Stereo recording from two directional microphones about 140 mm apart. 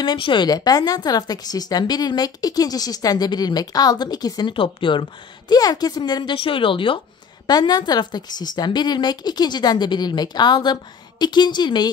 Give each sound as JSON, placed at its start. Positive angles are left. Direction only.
{"t": 0.0, "sound": "a woman's voice", "side_deg": 35}